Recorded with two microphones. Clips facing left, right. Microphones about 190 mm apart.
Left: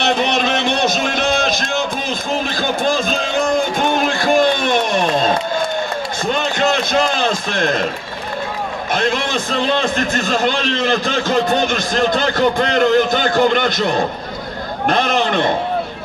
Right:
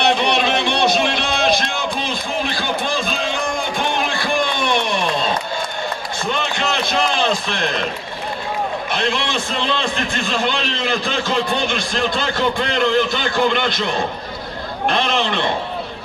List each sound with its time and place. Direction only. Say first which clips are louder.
0.0 s a sound: even; 45° left (ahead or behind)
3.7 s music: left 4 dB; 45° left (ahead or behind)
6.3 s run: left 6 dB; 45° left (ahead or behind)
8.9 s a man's voice: left 5 dB; 45° left (ahead or behind)